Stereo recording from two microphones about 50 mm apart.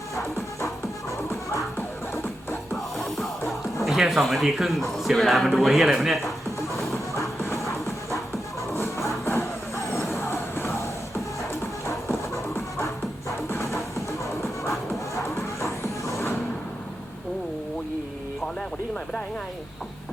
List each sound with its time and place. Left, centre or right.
0.2 s music: left
2.1 s music: left
3.8 s a sound: centre
4.0 s speech: centre
8.7 s music: left
13.5 s music: left
15.4 s vehicle: left